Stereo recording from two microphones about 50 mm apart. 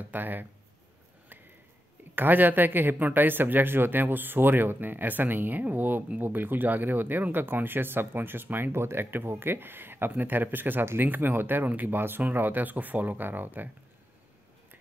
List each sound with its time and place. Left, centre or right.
0.1 s a man's voice: right
2.1 s a man's voice: right
8.7 s a man's voice: right